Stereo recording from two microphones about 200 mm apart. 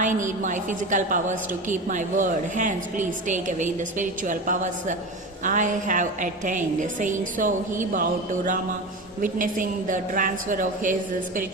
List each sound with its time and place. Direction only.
0.0 s a woman's voice: 40° right (ahead or behind)
9.2 s a woman's voice: 40° right (ahead or behind)